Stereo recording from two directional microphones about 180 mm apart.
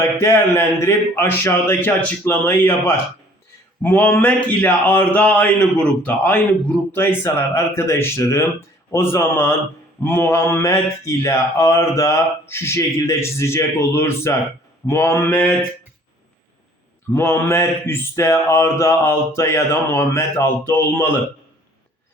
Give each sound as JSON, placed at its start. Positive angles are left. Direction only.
{"t": 0.0, "sound": "speech", "side_deg": 15}
{"t": 17.1, "sound": "speech", "side_deg": 15}